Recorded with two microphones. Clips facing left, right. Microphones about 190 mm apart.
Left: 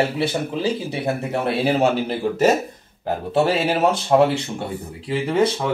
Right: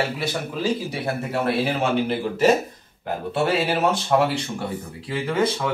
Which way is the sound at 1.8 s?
40° left (ahead or behind).